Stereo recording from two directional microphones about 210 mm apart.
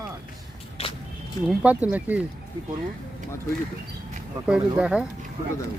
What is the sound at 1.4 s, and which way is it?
Speech, 5° right (ahead or behind).